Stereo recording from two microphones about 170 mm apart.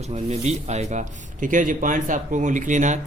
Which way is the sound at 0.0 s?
40° right (ahead or behind).